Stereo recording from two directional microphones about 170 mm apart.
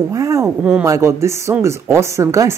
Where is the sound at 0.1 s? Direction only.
20° right (ahead or behind).